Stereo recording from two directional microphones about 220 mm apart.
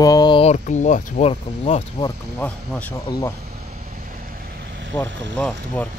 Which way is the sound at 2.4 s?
5° left (ahead or behind).